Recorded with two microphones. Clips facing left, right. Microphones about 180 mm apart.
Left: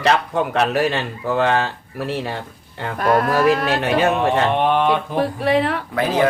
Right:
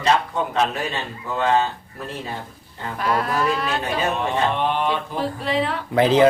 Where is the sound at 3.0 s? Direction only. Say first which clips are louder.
Left 6 dB; 50° left (ahead or behind).